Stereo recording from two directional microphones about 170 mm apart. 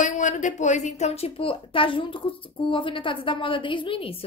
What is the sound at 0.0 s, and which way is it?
A woman's voice, 45° left (ahead or behind).